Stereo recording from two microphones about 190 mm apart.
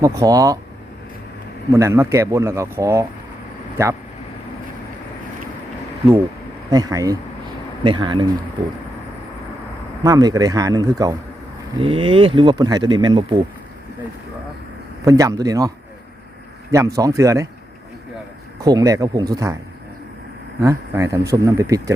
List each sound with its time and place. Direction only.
0.0 s speech: 15° right (ahead or behind)
1.7 s speech: 15° right (ahead or behind)
6.7 s speech: 20° right (ahead or behind)
10.0 s speech: 20° right (ahead or behind)
15.0 s speech: 15° right (ahead or behind)
16.7 s speech: 15° right (ahead or behind)
18.6 s speech: 20° right (ahead or behind)
20.6 s speech: 15° right (ahead or behind)